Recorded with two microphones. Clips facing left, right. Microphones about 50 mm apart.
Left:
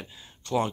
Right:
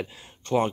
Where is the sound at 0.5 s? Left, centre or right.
Right.